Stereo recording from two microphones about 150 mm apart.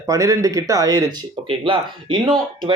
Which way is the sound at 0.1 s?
20° right (ahead or behind).